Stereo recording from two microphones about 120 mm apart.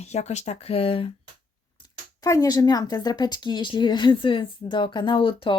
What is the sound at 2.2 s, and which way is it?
Speech, 30° left (ahead or behind).